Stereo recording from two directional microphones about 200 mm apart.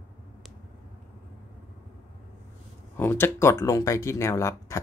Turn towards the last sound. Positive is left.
turn(degrees=15)  # may be behind; listen again after turning